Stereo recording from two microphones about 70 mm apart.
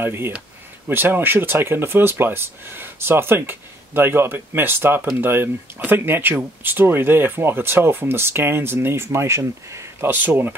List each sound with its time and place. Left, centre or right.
0.0 s speech: right
10.0 s speech: right